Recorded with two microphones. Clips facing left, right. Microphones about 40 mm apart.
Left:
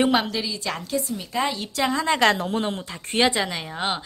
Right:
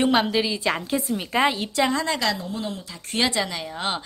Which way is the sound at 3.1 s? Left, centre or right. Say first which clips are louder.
Left 2 dB; centre.